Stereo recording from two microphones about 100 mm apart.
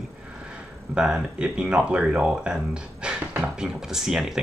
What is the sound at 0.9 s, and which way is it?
Speech, 10° right (ahead or behind).